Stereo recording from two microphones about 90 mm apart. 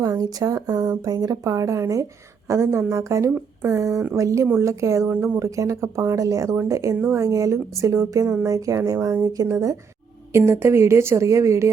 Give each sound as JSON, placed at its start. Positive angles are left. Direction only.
{"t": 0.0, "sound": "a woman's voice", "side_deg": -45}